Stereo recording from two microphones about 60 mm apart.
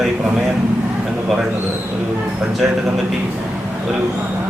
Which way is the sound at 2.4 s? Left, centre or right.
Centre.